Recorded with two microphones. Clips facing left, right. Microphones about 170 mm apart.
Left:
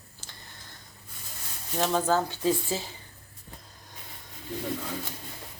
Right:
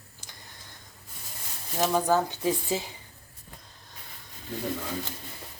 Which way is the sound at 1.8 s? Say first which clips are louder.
Right 1 dB; 15° right (ahead or behind).